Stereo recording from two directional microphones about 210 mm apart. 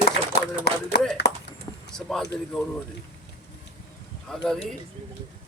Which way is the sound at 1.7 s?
20° left (ahead or behind).